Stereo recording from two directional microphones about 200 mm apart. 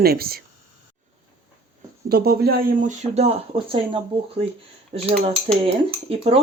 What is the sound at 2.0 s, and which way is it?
Speech, 50° right (ahead or behind).